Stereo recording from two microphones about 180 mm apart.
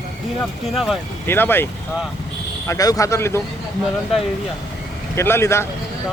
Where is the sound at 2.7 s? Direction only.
20° left (ahead or behind).